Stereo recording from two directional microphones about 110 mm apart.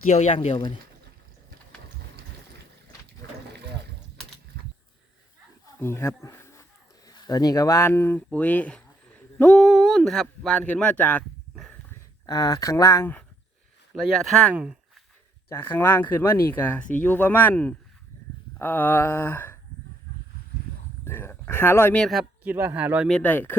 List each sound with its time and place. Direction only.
0.1 s speech: 80° left
0.3 s speech: 60° left (ahead or behind)
5.8 s mantra: 20° left (ahead or behind)
6.2 s a sound: 25° left (ahead or behind)
7.1 s speech: 35° left (ahead or behind); by 9.6 s 10° left (ahead or behind)
9.6 s speech: 5° right (ahead or behind); by 11.3 s 15° left (ahead or behind)
12.2 s speech: 40° left (ahead or behind)
13.9 s speech: centre (ahead or behind)
15.4 s speech: 20° left (ahead or behind)
18.6 s mantra: 20° left (ahead or behind)
21.0 s speech: 20° left (ahead or behind)
21.9 s speech: 5° left (ahead or behind)
22.2 s speech: 20° right (ahead or behind)
23.0 s speech: 10° left (ahead or behind)